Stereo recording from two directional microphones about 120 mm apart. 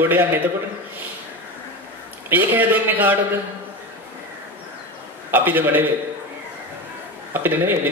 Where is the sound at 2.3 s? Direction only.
15° right (ahead or behind).